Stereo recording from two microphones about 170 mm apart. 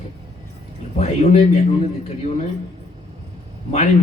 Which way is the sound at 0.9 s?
40° left (ahead or behind).